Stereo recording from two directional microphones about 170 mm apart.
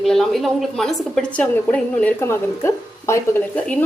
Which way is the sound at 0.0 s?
Centre (ahead or behind).